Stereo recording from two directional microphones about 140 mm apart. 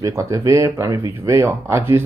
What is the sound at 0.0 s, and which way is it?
Speech, 20° right (ahead or behind).